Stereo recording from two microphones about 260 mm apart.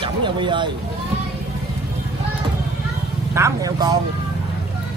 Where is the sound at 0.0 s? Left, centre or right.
Centre.